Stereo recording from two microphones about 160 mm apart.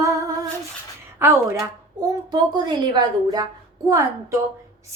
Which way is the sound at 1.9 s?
25° right (ahead or behind).